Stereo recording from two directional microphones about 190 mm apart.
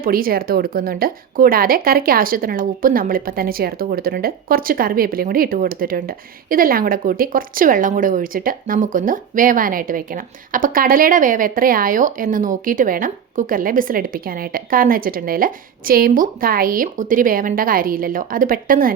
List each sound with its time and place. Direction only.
0.0 s speech: 50° right (ahead or behind)